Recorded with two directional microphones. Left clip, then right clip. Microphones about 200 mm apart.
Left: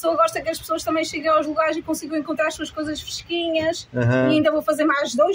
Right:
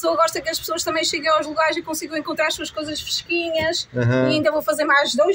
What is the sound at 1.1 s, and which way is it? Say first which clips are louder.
Speech: left 1 dB; 40° right (ahead or behind).